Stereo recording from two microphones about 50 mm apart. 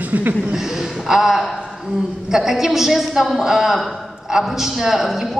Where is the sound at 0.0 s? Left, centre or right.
Right.